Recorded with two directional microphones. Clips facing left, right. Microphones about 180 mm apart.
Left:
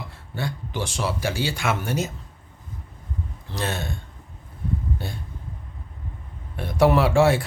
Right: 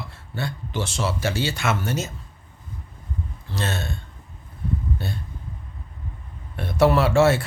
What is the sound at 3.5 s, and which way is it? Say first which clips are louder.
Speech: even; 15° left (ahead or behind).